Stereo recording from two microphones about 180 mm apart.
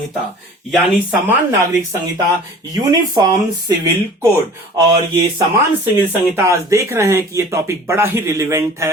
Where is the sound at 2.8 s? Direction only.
20° right (ahead or behind).